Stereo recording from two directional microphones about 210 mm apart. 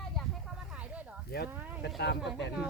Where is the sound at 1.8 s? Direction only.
55° left (ahead or behind).